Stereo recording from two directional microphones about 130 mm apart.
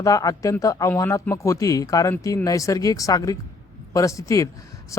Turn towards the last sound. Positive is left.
turn(degrees=25)  # may be behind; listen again after turning